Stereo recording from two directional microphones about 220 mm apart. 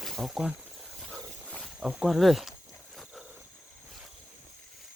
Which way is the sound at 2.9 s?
Centre (ahead or behind).